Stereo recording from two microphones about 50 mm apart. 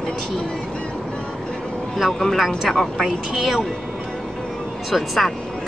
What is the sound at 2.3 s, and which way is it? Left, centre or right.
Speech, centre.